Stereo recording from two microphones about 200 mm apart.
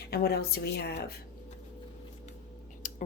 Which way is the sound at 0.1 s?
50° left (ahead or behind).